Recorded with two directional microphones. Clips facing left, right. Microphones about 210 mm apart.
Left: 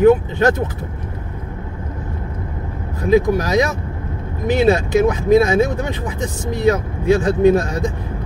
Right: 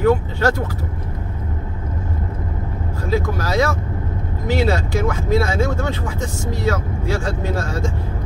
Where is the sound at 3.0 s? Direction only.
15° left (ahead or behind).